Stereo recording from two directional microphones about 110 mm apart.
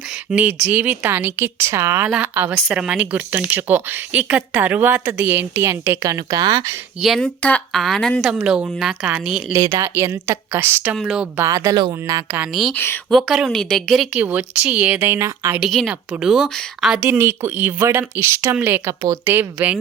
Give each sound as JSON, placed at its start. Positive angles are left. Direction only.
{"t": 0.3, "sound": "a woman's voice", "side_deg": -10}
{"t": 2.0, "sound": "a woman's voice", "side_deg": -5}
{"t": 2.3, "sound": "a woman's voice", "side_deg": -20}
{"t": 2.6, "sound": "a woman's voice", "side_deg": -10}
{"t": 7.0, "sound": "speech", "side_deg": 0}
{"t": 8.4, "sound": "a woman's voice", "side_deg": -10}
{"t": 9.5, "sound": "a woman's voice", "side_deg": -25}
{"t": 10.9, "sound": "speech", "side_deg": -5}
{"t": 11.3, "sound": "speech", "side_deg": -30}
{"t": 12.7, "sound": "speech", "side_deg": 20}
{"t": 13.1, "sound": "speech", "side_deg": 0}
{"t": 15.6, "sound": "speech", "side_deg": -5}
{"t": 17.1, "sound": "a woman's voice", "side_deg": -20}